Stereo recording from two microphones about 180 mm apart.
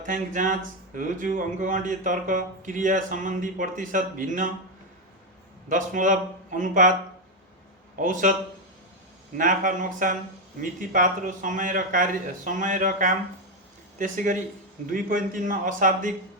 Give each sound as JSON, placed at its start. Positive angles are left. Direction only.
{"t": 0.0, "sound": "speech", "side_deg": -45}
{"t": 5.6, "sound": "speech", "side_deg": -45}
{"t": 7.9, "sound": "speech", "side_deg": -45}
{"t": 9.4, "sound": "speech", "side_deg": -45}